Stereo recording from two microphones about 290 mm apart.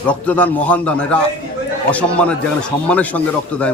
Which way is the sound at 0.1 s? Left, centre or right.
Centre.